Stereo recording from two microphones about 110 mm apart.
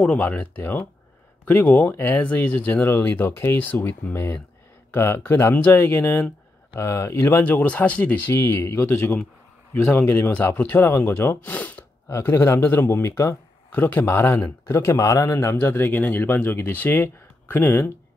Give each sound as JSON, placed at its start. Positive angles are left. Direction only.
{"t": 0.0, "sound": "speech", "side_deg": 15}
{"t": 12.1, "sound": "speech", "side_deg": 25}